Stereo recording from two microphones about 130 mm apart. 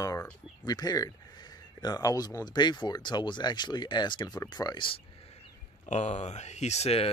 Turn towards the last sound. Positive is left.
turn(degrees=55)  # may be behind; listen again after turning